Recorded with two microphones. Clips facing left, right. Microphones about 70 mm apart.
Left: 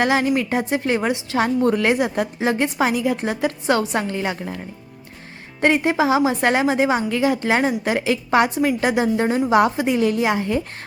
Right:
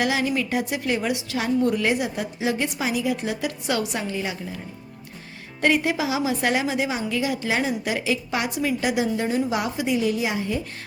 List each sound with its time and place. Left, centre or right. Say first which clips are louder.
0.0 s a woman's voice: left 5 dB; left
4.1 s a woman's voice: left 4 dB; left
5.5 s a woman's voice: left 4 dB; left